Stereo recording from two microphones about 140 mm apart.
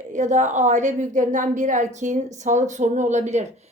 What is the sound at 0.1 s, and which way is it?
A woman's voice, 60° right (ahead or behind).